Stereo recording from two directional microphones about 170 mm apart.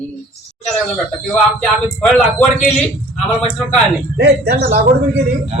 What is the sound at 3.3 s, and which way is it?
Speech, 5° left (ahead or behind).